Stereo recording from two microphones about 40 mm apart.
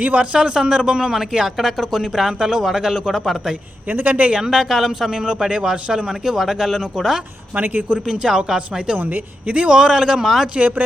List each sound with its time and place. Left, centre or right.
0.0 s speech: right
0.3 s a man's voice: right
4.0 s speech: right
4.3 s a man's voice: centre
4.7 s a man's voice: centre
5.2 s speech: right
6.3 s a man's voice: centre
7.5 s speech: right
8.0 s a man's voice: centre
9.0 s speech: right
9.6 s a man's voice: centre